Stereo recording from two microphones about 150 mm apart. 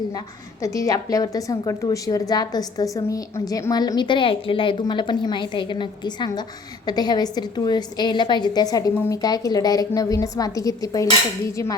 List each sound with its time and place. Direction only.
0.6 s a woman's voice: 20° left (ahead or behind)